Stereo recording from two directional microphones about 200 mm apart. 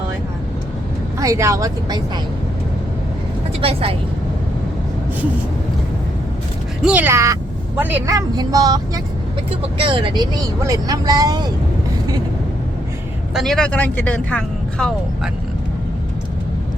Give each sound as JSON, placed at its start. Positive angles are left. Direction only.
{"t": 1.2, "sound": "speech", "side_deg": -15}
{"t": 3.6, "sound": "speech", "side_deg": -30}
{"t": 6.8, "sound": "speech", "side_deg": -10}
{"t": 13.3, "sound": "speech", "side_deg": 0}